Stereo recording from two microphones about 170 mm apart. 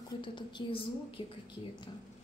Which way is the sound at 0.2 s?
25° left (ahead or behind).